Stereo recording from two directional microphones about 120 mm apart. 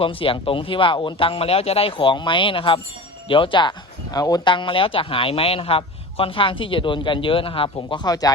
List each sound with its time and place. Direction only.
0.0 s speech: 50° left (ahead or behind); by 8.3 s 35° left (ahead or behind)